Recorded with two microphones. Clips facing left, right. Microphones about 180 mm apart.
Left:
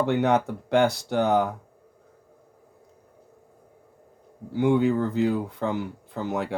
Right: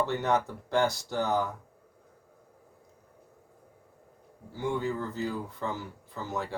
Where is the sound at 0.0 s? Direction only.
65° left (ahead or behind).